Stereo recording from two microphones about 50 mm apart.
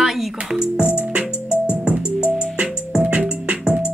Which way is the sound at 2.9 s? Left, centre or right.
Right.